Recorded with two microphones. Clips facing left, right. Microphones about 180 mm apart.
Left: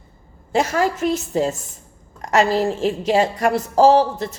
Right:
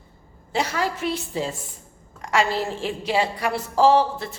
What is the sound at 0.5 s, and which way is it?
A woman's voice, 45° left (ahead or behind).